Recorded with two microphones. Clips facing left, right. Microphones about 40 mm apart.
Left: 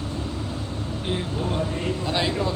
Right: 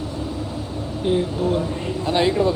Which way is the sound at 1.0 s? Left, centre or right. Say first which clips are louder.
Right 8 dB; centre.